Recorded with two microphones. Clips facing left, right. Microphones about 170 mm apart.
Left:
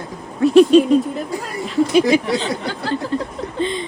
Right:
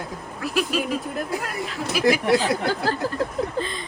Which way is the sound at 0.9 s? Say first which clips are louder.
Left 9 dB; centre (ahead or behind).